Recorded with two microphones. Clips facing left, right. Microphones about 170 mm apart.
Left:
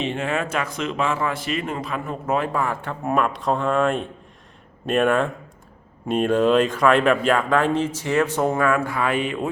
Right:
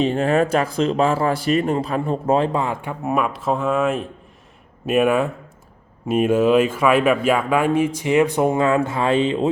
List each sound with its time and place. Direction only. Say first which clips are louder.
0.0 s speech: right 7 dB; 35° right (ahead or behind)